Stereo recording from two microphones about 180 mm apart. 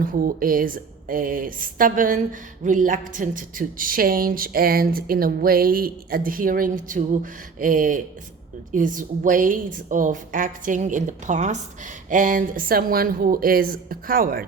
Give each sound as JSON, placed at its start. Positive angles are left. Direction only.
{"t": 0.0, "sound": "speech", "side_deg": -50}